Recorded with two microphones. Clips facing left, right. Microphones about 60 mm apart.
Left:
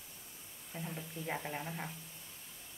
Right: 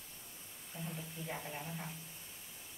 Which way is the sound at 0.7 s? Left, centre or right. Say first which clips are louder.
Left 2 dB; left.